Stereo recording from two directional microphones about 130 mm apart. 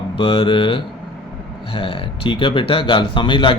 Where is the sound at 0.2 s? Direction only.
45° left (ahead or behind).